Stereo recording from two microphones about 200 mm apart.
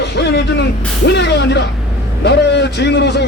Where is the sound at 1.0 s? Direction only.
55° left (ahead or behind).